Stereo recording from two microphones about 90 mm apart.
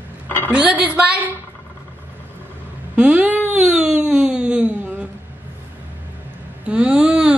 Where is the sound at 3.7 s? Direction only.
10° right (ahead or behind).